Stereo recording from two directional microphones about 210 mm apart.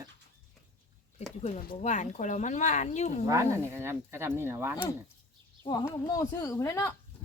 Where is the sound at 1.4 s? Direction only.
30° left (ahead or behind).